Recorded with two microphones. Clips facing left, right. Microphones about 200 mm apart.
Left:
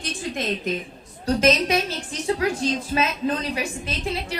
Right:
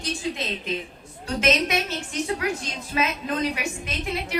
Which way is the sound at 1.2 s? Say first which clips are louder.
Left 4 dB; 35° left (ahead or behind).